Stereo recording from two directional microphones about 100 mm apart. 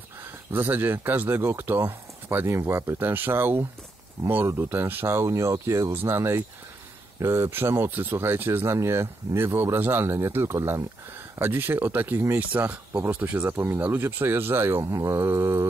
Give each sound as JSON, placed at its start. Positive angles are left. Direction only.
{"t": 0.5, "sound": "speech", "side_deg": -20}